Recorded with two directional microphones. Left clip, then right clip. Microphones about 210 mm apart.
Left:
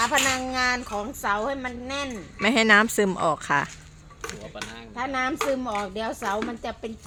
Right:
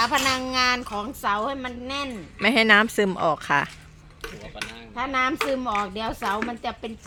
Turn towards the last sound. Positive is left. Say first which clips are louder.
# right 1 dB
turn(degrees=-45)  # may be behind; listen again after turning